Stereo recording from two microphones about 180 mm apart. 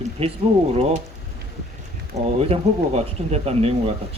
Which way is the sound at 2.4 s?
35° right (ahead or behind).